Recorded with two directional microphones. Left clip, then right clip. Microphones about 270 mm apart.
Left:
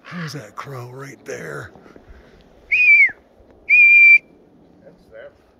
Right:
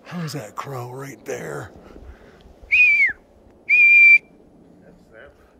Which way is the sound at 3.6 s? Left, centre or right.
Right.